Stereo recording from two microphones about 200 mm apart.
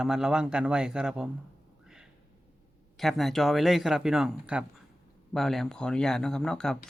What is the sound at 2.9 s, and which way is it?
Speech, centre (ahead or behind).